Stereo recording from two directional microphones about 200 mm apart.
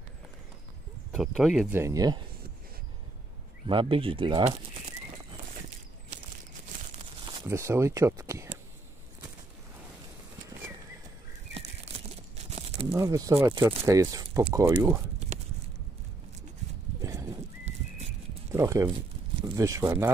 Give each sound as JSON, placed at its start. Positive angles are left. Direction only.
{"t": 1.1, "sound": "speech", "side_deg": 0}
{"t": 1.7, "sound": "speech", "side_deg": -15}
{"t": 3.6, "sound": "speech", "side_deg": -25}
{"t": 7.4, "sound": "speech", "side_deg": -15}
{"t": 12.9, "sound": "speech", "side_deg": -15}
{"t": 15.3, "sound": "a sound", "side_deg": -35}
{"t": 17.0, "sound": "horse", "side_deg": -15}
{"t": 18.5, "sound": "speech", "side_deg": -15}